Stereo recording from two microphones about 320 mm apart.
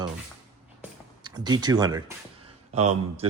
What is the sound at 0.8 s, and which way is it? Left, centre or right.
Music, centre.